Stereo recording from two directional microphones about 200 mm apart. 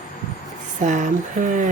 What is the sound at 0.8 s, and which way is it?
Speech, 40° right (ahead or behind).